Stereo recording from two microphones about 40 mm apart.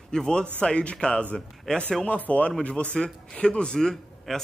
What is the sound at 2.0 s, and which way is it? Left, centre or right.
A man's voice, left.